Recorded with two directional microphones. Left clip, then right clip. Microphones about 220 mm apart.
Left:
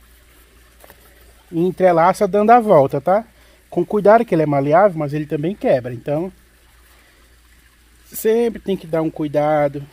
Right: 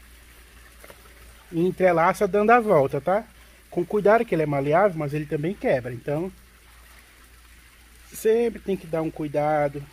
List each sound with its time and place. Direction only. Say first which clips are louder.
1.5 s speech: left 6 dB; 40° left (ahead or behind)
8.1 s speech: left 4 dB; 45° left (ahead or behind)